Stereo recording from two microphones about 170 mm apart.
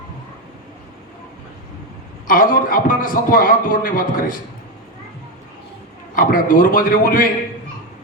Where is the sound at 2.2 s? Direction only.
55° left (ahead or behind).